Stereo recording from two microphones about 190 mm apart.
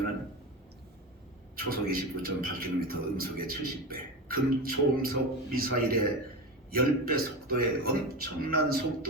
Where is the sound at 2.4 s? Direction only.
50° right (ahead or behind).